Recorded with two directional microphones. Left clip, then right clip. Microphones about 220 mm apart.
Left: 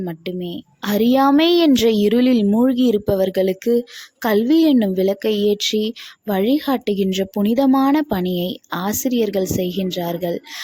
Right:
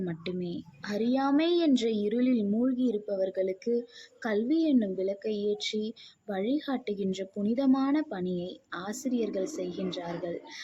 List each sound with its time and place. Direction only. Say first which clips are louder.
0.0 s a child's voice: left 9 dB; 35° left (ahead or behind)